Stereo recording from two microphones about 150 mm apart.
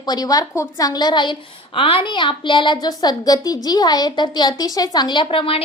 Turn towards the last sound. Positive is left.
turn(degrees=40)  # may be behind; listen again after turning